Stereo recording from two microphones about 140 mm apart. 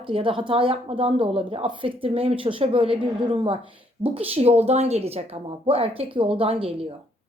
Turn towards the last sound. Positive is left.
turn(degrees=-45)  # may be behind; listen again after turning